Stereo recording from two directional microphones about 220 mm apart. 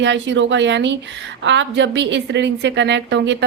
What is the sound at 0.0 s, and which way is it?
A woman's voice, 55° right (ahead or behind).